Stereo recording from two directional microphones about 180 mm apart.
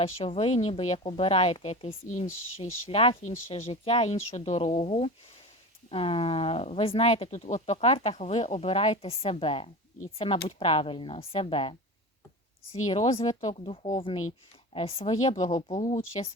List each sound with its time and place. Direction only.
0.0 s speech: 35° left (ahead or behind)
2.0 s speech: 45° left (ahead or behind)
12.9 s speech: 30° left (ahead or behind)